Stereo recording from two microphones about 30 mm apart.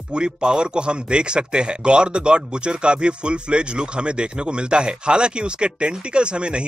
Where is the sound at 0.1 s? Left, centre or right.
Right.